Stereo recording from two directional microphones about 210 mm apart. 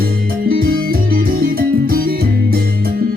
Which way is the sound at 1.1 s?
45° right (ahead or behind).